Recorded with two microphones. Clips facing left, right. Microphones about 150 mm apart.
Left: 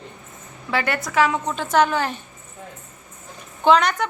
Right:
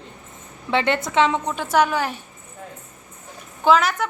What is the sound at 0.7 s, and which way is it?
Speech, 25° right (ahead or behind).